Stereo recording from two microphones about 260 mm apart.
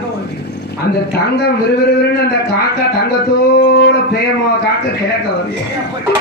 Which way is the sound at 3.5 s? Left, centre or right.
Left.